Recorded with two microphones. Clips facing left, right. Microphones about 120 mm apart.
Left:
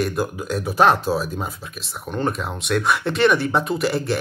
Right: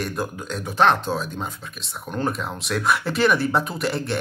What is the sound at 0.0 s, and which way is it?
Speech, centre (ahead or behind).